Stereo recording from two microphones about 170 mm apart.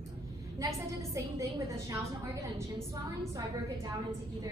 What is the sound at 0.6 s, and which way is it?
A woman's voice, 20° right (ahead or behind).